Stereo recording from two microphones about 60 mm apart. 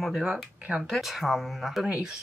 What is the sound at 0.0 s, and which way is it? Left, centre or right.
Speech, centre.